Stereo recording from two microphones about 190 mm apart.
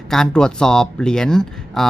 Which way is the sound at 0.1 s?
5° left (ahead or behind).